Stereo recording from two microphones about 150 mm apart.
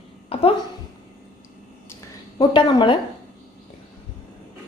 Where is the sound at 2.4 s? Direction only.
30° left (ahead or behind).